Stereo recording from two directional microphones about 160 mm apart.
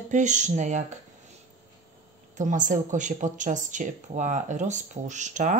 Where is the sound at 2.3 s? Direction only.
50° right (ahead or behind).